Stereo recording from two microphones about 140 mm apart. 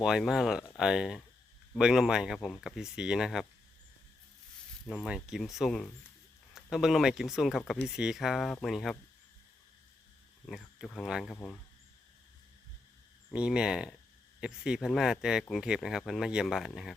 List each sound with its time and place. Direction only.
0.0 s speech: 5° right (ahead or behind)
5.0 s speech: 5° right (ahead or behind)
10.4 s speech: centre (ahead or behind)
13.3 s speech: 5° right (ahead or behind)